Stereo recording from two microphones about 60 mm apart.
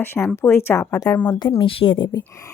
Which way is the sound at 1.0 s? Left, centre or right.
Left.